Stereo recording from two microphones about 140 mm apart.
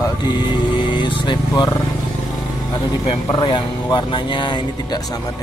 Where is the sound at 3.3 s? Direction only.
30° left (ahead or behind).